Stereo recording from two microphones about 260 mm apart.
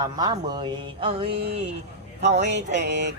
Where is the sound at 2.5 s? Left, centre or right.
Right.